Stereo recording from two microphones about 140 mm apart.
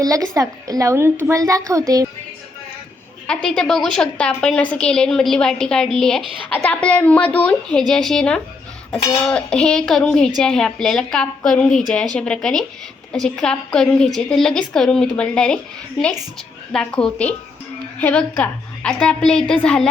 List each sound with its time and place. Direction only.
0.0 s a woman's voice: 25° right (ahead or behind)
3.2 s a woman's voice: 5° left (ahead or behind)
16.7 s a woman's voice: 5° left (ahead or behind)